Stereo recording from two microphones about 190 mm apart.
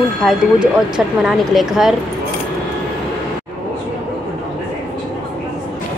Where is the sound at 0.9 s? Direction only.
Centre (ahead or behind).